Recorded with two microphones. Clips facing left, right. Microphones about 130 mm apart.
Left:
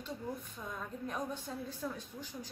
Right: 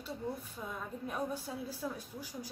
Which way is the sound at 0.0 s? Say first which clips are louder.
Right 1 dB; 10° right (ahead or behind).